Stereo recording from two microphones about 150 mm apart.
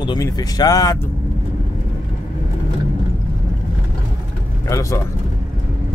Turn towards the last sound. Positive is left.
turn(degrees=20)  # may be behind; listen again after turning